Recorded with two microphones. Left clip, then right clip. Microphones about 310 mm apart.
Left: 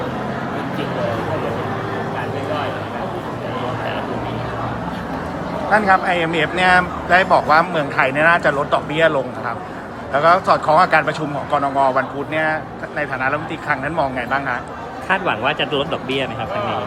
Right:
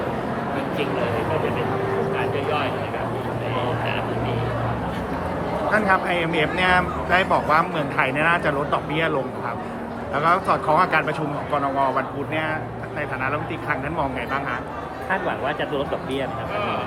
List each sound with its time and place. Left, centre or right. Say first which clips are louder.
5.7 s speech: left 6 dB; centre
10.2 s speech: left 6 dB; centre
15.1 s speech: left 6 dB; left